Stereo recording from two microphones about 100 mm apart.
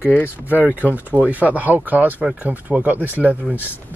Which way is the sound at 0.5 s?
20° right (ahead or behind).